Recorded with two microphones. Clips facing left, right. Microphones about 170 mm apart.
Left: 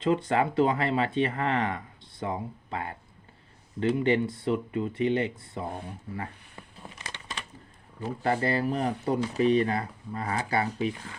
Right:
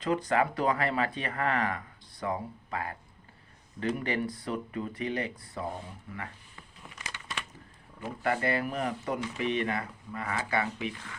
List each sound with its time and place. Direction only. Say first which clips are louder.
0.0 s speech: left 2 dB; 25° left (ahead or behind)
6.8 s a sound: left 1 dB; 30° left (ahead or behind)
8.0 s speech: left 3 dB; 30° left (ahead or behind)